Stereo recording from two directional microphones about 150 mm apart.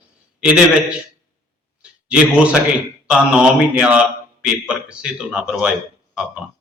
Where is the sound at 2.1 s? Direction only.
5° right (ahead or behind).